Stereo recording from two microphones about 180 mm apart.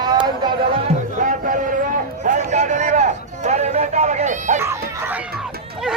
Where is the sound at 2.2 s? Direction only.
40° right (ahead or behind).